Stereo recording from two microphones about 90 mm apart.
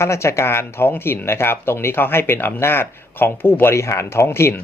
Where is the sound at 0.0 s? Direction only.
30° left (ahead or behind).